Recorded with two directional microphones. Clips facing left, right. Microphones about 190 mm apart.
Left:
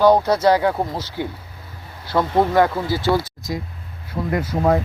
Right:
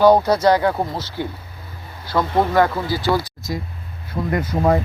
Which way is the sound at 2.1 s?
25° left (ahead or behind).